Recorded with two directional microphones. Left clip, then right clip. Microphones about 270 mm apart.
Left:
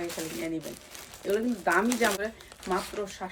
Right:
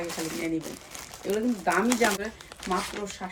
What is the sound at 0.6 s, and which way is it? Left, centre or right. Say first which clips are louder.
Speech: right 3 dB; right.